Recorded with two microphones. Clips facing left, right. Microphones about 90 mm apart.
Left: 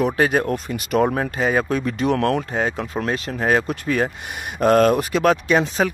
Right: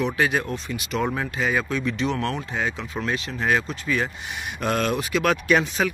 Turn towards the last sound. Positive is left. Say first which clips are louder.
# left 2 dB
turn(degrees=35)  # may be behind; listen again after turning